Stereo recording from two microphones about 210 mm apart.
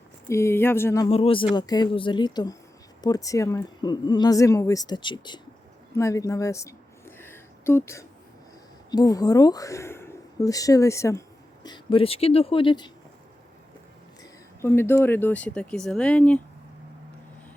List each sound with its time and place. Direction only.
0.3 s speech: 15° left (ahead or behind)
1.0 s speech: 25° left (ahead or behind)
6.0 s a sound: 15° left (ahead or behind)
8.9 s speech: 20° left (ahead or behind)
14.6 s speech: 10° left (ahead or behind)